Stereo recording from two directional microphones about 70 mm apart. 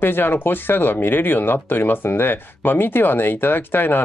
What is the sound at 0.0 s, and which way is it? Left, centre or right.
Speech, left.